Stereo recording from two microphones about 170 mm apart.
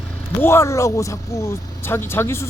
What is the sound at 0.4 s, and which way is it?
Speech, 15° left (ahead or behind).